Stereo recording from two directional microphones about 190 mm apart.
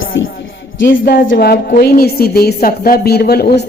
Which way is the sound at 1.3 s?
55° left (ahead or behind).